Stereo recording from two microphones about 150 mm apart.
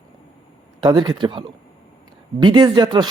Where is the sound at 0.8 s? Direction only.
30° right (ahead or behind).